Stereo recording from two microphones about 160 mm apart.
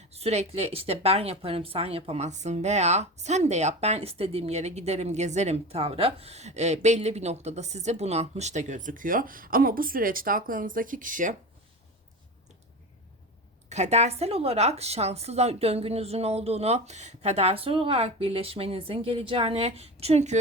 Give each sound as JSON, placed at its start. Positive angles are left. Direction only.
{"t": 0.1, "sound": "speech", "side_deg": -40}
{"t": 13.7, "sound": "a woman's voice", "side_deg": -45}